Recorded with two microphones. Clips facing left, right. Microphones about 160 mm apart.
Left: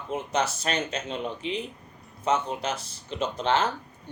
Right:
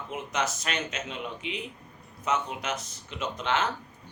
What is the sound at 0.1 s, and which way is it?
A man's voice, 30° left (ahead or behind).